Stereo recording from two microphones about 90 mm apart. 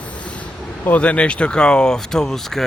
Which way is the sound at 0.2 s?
15° left (ahead or behind).